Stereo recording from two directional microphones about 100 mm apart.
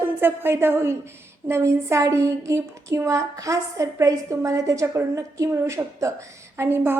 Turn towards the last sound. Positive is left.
turn(degrees=-25)  # may be behind; listen again after turning